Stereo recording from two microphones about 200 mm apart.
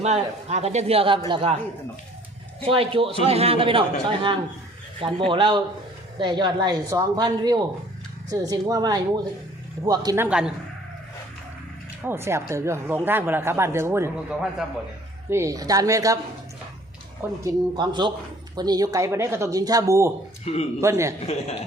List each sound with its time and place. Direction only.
0.0 s a man's voice: 35° right (ahead or behind)
2.6 s a woman's voice: 30° right (ahead or behind)
4.9 s a woman's voice: 25° right (ahead or behind)
10.2 s speech: 5° right (ahead or behind)
12.0 s speech: 10° right (ahead or behind)
17.4 s a woman's voice: 20° right (ahead or behind)
20.4 s speech: 30° left (ahead or behind)
20.8 s speech: 15° right (ahead or behind)
21.2 s a woman's voice: 30° left (ahead or behind)